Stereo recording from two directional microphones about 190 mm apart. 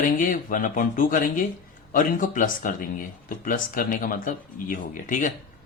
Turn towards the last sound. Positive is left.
turn(degrees=40)  # may be behind; listen again after turning